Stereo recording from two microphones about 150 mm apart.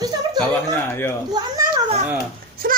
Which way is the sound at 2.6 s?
75° right (ahead or behind).